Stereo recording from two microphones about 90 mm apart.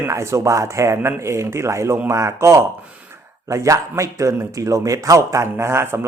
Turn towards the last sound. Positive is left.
turn(degrees=-30)  # may be behind; listen again after turning